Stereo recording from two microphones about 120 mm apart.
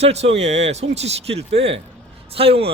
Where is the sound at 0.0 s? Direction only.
60° right (ahead or behind).